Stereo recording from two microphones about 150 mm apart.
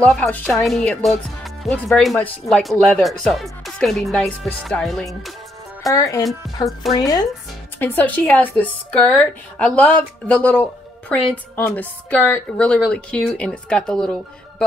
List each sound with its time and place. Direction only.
0.0 s a woman's voice: 5° left (ahead or behind)
5.9 s speech: 20° left (ahead or behind)
7.8 s a woman's voice: 10° left (ahead or behind)